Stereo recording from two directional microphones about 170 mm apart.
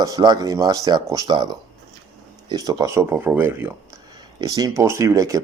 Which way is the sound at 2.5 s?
20° right (ahead or behind).